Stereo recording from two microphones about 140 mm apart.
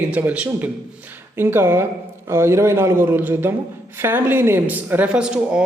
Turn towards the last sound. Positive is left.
turn(degrees=-5)  # may be behind; listen again after turning